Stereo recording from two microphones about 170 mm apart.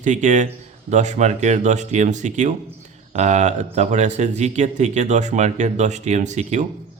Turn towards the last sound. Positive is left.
turn(degrees=-45)  # may be behind; listen again after turning